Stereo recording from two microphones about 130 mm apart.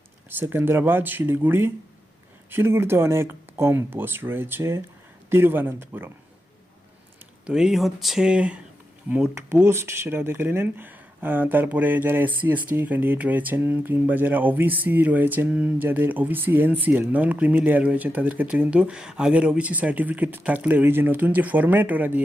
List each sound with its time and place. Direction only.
0.3 s speech: 15° right (ahead or behind)
7.4 s speech: 5° right (ahead or behind)